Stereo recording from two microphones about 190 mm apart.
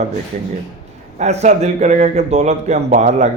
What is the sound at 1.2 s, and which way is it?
Speech, 35° right (ahead or behind).